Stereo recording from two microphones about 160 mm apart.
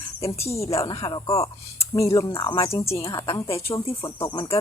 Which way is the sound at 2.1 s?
35° left (ahead or behind).